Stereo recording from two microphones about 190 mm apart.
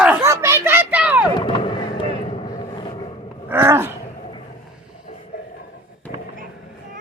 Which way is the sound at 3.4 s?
10° right (ahead or behind).